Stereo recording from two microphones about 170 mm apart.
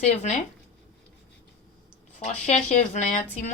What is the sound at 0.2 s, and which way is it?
Speech, 45° left (ahead or behind).